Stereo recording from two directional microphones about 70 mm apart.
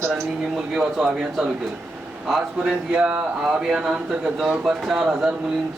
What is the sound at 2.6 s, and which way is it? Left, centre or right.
Speech, centre.